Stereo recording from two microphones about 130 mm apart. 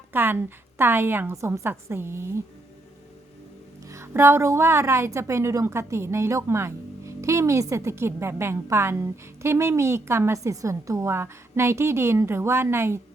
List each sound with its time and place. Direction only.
0.1 s a woman's voice: 15° right (ahead or behind)
3.8 s a woman's voice: 20° right (ahead or behind)